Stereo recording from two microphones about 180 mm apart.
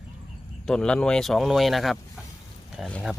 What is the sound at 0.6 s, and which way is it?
Speech, 5° left (ahead or behind).